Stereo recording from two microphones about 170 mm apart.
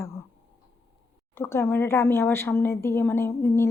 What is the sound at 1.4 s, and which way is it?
Speech, 15° left (ahead or behind).